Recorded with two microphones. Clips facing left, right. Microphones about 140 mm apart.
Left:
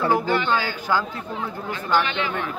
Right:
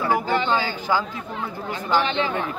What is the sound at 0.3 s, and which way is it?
Speech, 15° right (ahead or behind).